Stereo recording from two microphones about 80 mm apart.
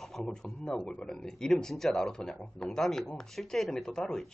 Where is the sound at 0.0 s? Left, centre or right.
Centre.